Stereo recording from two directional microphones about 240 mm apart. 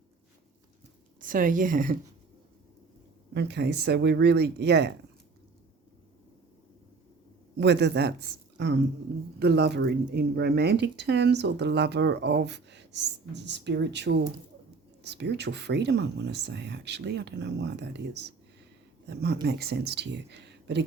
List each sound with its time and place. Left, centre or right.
1.2 s speech: right
3.3 s speech: right
7.6 s speech: right